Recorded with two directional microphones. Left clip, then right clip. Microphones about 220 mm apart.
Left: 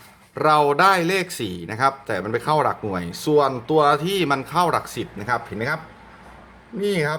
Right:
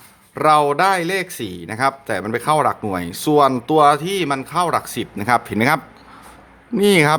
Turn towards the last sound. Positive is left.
turn(degrees=-45)  # may be behind; listen again after turning